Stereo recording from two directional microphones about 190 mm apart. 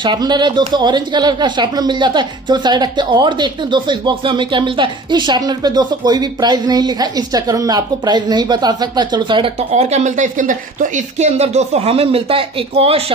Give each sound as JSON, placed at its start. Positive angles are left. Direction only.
{"t": 0.0, "sound": "speech", "side_deg": -25}